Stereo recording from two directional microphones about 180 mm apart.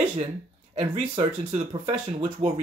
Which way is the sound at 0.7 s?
35° right (ahead or behind).